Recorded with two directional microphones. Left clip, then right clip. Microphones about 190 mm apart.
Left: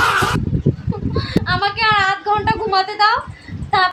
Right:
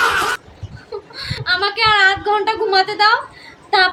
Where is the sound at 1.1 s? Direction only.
15° left (ahead or behind).